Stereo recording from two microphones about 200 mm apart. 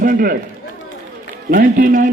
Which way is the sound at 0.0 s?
45° right (ahead or behind).